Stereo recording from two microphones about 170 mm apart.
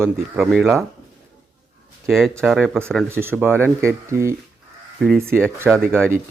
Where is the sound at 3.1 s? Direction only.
15° right (ahead or behind).